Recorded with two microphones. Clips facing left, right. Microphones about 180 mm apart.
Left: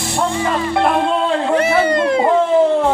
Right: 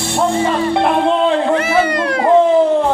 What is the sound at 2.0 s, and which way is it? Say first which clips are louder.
Speech: left 2 dB; 25° left (ahead or behind).